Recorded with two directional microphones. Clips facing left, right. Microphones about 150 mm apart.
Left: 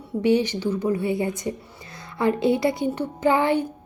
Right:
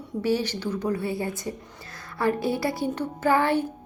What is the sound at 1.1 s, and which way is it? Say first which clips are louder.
A woman's voice: left 4 dB; 20° left (ahead or behind).